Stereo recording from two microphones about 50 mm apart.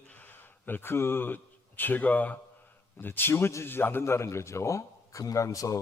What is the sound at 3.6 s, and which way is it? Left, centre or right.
Speech, left.